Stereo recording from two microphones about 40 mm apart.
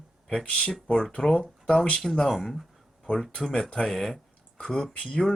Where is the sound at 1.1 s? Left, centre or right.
Centre.